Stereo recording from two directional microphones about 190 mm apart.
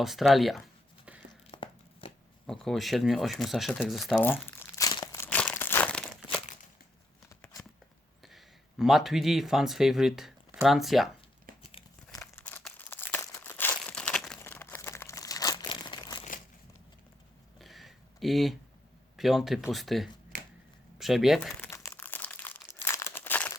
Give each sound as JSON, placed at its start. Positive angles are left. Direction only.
{"t": 0.0, "sound": "speech", "side_deg": 0}
{"t": 1.3, "sound": "tearing", "side_deg": 25}
{"t": 2.5, "sound": "speech", "side_deg": 0}
{"t": 4.8, "sound": "crumpling", "side_deg": 20}
{"t": 8.2, "sound": "speech", "side_deg": 0}
{"t": 11.5, "sound": "crumpling", "side_deg": -45}
{"t": 12.2, "sound": "crumpling", "side_deg": 10}
{"t": 17.6, "sound": "a sound", "side_deg": 0}
{"t": 19.1, "sound": "speech", "side_deg": 0}
{"t": 20.3, "sound": "shuffling cards", "side_deg": -45}
{"t": 21.0, "sound": "speech", "side_deg": 0}
{"t": 21.5, "sound": "crumpling", "side_deg": 10}